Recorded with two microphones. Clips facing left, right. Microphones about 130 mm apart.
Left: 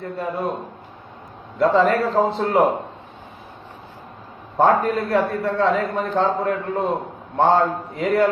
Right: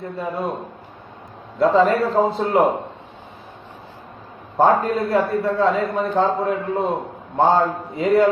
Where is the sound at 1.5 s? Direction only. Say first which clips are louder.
Right 1 dB; centre (ahead or behind).